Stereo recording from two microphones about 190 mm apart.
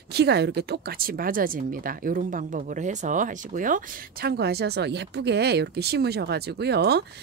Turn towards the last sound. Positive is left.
turn(degrees=-60)  # may be behind; listen again after turning